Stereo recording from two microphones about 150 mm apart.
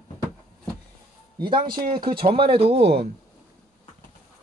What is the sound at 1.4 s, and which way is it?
Speech, 30° right (ahead or behind).